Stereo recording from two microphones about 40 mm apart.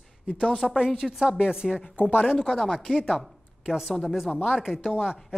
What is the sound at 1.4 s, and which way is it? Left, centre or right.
Speech, centre.